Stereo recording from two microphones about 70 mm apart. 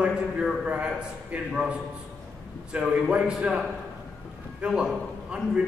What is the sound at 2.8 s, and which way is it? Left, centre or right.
A man's voice, centre.